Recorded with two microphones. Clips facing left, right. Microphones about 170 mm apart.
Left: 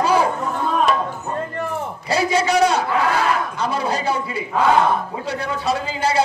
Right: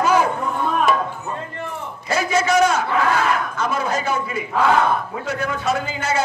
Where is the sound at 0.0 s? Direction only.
30° left (ahead or behind).